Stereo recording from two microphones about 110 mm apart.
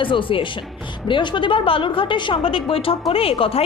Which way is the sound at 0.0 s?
50° left (ahead or behind).